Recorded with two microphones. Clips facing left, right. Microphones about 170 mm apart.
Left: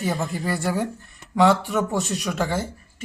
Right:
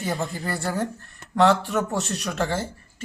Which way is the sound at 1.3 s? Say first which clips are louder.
Left 1 dB; centre (ahead or behind).